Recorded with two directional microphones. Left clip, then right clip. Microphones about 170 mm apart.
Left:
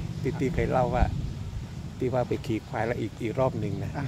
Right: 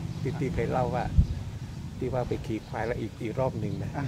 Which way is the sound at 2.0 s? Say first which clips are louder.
Left 3 dB; 70° left (ahead or behind).